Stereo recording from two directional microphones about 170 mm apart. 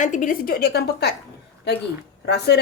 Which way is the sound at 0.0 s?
50° left (ahead or behind).